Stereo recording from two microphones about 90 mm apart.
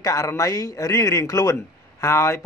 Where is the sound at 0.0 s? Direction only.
40° left (ahead or behind).